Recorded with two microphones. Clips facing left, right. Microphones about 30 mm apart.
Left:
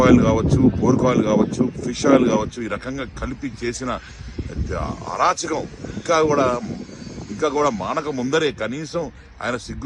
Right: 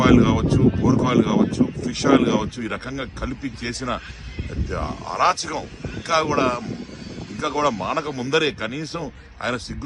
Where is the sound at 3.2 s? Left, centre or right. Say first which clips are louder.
Left 1 dB; right.